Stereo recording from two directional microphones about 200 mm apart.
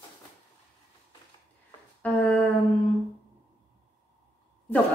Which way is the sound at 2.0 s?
5° left (ahead or behind).